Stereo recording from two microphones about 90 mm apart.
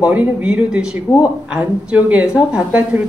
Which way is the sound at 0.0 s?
15° right (ahead or behind).